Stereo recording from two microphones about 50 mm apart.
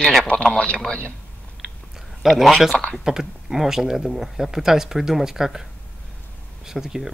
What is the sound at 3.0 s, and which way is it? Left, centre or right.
Speech, centre.